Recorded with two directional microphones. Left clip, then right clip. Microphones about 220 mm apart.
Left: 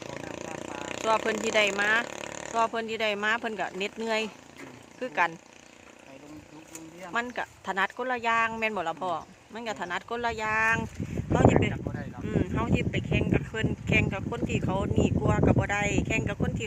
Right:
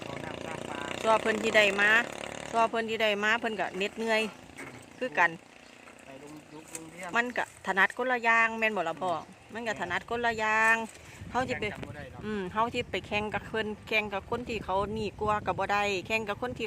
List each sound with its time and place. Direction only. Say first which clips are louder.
0.3 s vehicle: even; 45° left (ahead or behind)
1.0 s speech: even; centre (ahead or behind)
2.0 s vehicle: left 1 dB; 40° left (ahead or behind)
2.6 s speech: even; centre (ahead or behind)
7.1 s speech: right 2 dB; 5° right (ahead or behind)